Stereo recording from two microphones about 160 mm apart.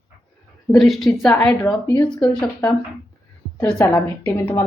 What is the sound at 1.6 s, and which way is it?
Speech, 20° left (ahead or behind).